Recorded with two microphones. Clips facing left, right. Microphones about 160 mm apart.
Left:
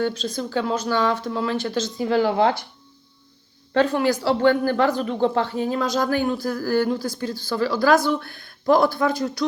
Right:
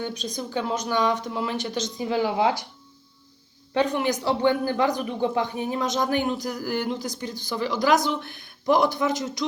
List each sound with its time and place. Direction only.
0.0 s a woman's voice: 15° right (ahead or behind)
3.8 s speech: 20° right (ahead or behind)